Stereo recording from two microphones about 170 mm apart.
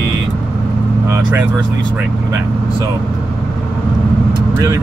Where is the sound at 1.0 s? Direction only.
15° right (ahead or behind).